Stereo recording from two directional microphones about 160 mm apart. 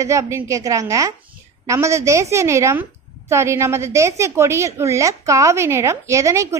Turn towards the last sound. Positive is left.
turn(degrees=-20)  # may be behind; listen again after turning